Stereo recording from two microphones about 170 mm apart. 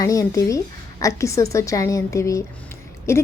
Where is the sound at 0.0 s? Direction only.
20° left (ahead or behind).